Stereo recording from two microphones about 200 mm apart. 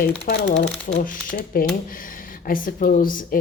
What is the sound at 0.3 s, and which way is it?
A woman's voice, 55° left (ahead or behind).